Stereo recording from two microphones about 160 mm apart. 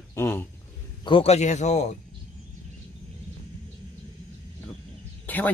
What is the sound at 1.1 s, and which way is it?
Speech, 35° left (ahead or behind).